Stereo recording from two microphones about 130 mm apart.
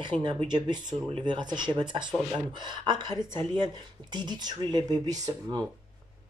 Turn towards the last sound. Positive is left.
turn(degrees=-30)  # may be behind; listen again after turning